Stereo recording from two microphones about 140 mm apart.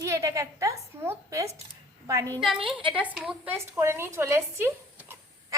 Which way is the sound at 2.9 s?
5° right (ahead or behind).